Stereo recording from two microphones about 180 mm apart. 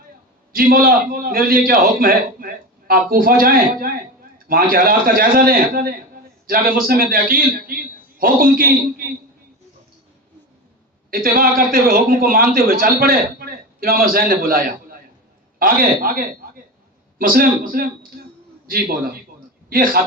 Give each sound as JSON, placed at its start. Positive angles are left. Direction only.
{"t": 0.5, "sound": "a man's voice", "side_deg": -55}
{"t": 11.1, "sound": "a man's voice", "side_deg": -55}